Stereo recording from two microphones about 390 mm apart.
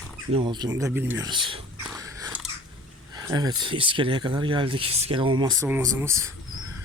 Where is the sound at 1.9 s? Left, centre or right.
Centre.